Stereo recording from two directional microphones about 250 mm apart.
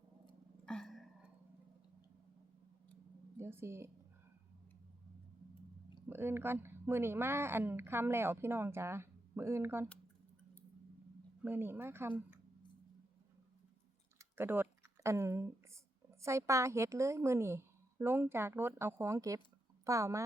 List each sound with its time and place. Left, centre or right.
0.6 s a sound: centre
3.3 s a woman's voice: centre
6.1 s a woman's voice: centre
11.4 s a woman's voice: centre
14.2 s a sound: centre
16.2 s a woman's voice: centre